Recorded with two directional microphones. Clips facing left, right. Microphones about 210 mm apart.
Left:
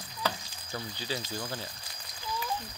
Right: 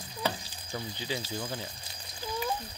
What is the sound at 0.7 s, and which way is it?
Speech, 15° right (ahead or behind).